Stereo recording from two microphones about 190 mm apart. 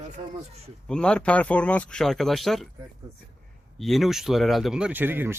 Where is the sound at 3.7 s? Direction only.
Centre (ahead or behind).